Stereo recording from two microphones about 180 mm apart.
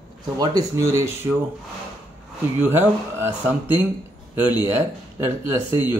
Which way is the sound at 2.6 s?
10° right (ahead or behind).